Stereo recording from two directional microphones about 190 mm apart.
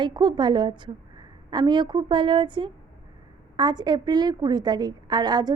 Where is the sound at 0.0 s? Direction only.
20° right (ahead or behind).